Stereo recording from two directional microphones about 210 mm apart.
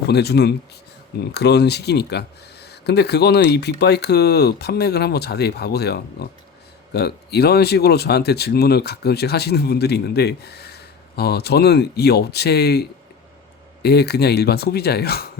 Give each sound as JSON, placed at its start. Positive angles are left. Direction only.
{"t": 0.1, "sound": "speech", "side_deg": 50}